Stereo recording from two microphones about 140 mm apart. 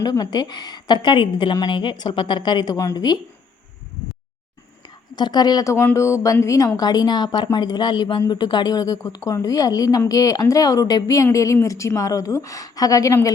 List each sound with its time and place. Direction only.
0.0 s a woman's voice: 30° left (ahead or behind)
5.1 s a woman's voice: 30° left (ahead or behind)